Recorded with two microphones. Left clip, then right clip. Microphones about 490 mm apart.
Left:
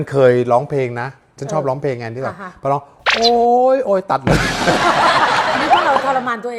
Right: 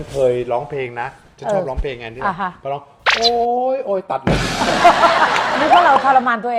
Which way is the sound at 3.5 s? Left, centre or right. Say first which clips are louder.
Left 5 dB; left.